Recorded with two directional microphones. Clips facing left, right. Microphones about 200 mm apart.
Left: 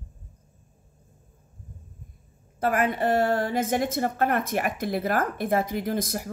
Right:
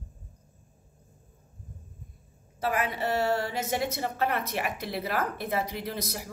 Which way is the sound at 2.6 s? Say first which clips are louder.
Left 5 dB; 50° left (ahead or behind).